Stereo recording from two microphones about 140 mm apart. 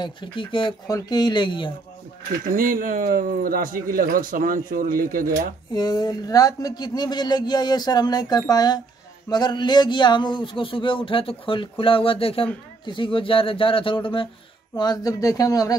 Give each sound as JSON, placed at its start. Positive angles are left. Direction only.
{"t": 0.0, "sound": "speech", "side_deg": 35}
{"t": 2.4, "sound": "speech", "side_deg": -75}
{"t": 5.7, "sound": "speech", "side_deg": 30}
{"t": 14.8, "sound": "speech", "side_deg": 25}